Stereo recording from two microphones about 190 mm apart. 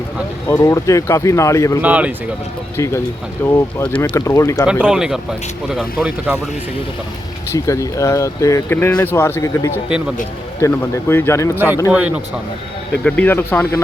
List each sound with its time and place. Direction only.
0.4 s speech: 15° left (ahead or behind)
1.8 s speech: 5° right (ahead or behind)
2.7 s speech: 15° left (ahead or behind)
4.6 s speech: 5° right (ahead or behind)
7.5 s speech: 15° left (ahead or behind)
11.5 s speech: 10° right (ahead or behind)
13.1 s speech: 10° left (ahead or behind)